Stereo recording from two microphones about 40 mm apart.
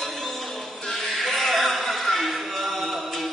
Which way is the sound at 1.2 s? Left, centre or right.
Centre.